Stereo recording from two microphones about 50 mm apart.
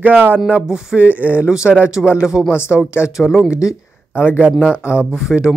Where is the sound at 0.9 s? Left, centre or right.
Right.